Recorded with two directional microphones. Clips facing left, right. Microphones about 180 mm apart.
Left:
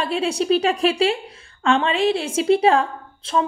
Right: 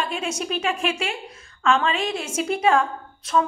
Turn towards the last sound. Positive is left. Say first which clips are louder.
# even
turn(degrees=30)  # may be behind; listen again after turning